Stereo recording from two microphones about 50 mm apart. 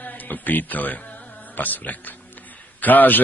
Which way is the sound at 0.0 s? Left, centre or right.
Left.